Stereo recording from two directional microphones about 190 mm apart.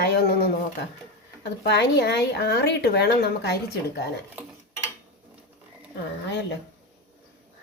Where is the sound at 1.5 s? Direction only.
65° left (ahead or behind).